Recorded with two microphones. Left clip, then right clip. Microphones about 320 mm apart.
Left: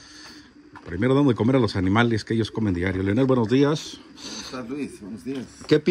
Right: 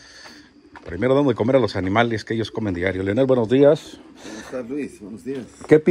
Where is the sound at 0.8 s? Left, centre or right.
Centre.